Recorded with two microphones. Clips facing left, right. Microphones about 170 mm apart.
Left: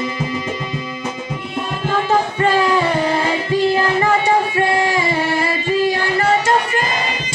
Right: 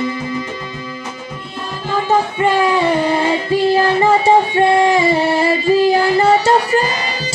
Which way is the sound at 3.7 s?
30° right (ahead or behind).